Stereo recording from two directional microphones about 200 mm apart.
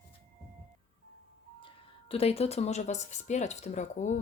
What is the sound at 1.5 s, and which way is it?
Speech, 25° left (ahead or behind).